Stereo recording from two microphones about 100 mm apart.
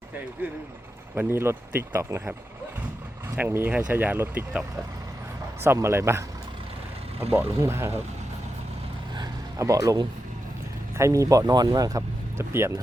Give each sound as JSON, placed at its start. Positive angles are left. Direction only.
{"t": 1.1, "sound": "speech", "side_deg": -25}
{"t": 3.3, "sound": "speech", "side_deg": -20}
{"t": 5.6, "sound": "speech", "side_deg": -25}
{"t": 7.6, "sound": "speech", "side_deg": -30}
{"t": 9.6, "sound": "speech", "side_deg": -35}
{"t": 12.4, "sound": "speech", "side_deg": -25}